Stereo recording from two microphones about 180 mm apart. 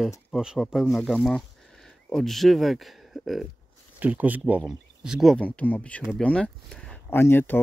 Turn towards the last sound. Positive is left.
turn(degrees=10)  # may be behind; listen again after turning